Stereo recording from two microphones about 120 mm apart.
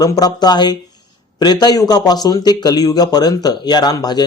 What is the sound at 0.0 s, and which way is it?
Speech, 35° left (ahead or behind).